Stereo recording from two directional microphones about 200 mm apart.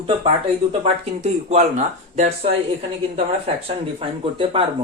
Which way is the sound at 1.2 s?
35° right (ahead or behind).